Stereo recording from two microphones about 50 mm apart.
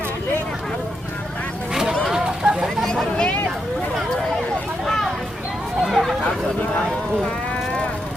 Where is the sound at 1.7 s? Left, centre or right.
Centre.